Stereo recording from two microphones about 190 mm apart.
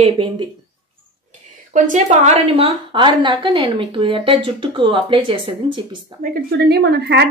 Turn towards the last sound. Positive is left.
turn(degrees=-60)  # may be behind; listen again after turning